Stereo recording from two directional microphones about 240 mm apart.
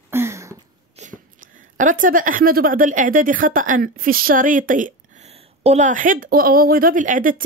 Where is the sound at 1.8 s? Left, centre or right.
Right.